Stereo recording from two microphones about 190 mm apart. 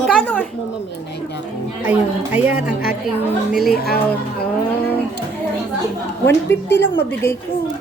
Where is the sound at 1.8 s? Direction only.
10° right (ahead or behind).